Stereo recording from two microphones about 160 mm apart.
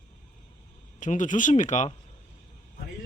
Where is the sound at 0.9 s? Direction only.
50° left (ahead or behind).